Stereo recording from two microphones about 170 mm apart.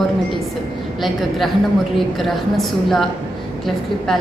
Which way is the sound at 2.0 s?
Centre (ahead or behind).